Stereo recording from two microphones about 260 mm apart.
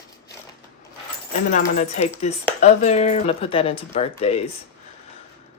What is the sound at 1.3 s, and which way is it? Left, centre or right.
Speech, left.